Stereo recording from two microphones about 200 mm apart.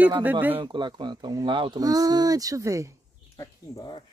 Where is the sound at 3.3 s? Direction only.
15° left (ahead or behind).